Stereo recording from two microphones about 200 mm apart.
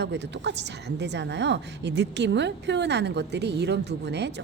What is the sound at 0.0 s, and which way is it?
Speech, 60° right (ahead or behind).